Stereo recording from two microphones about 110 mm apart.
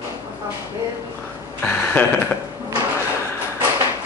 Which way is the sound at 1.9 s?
15° left (ahead or behind).